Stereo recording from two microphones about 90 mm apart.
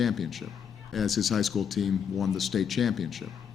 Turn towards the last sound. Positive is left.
turn(degrees=0)  # may be behind; listen again after turning